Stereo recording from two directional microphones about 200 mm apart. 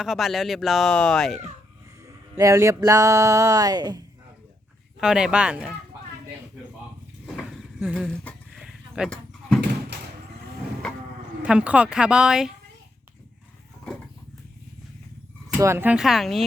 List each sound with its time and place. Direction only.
0.0 s speech: centre (ahead or behind)
2.0 s speech: 15° right (ahead or behind)
4.9 s speech: 5° right (ahead or behind)
7.3 s a sound: 5° right (ahead or behind)
10.8 s livestock: 5° left (ahead or behind)
11.4 s speech: 5° right (ahead or behind)
15.5 s speech: 15° right (ahead or behind)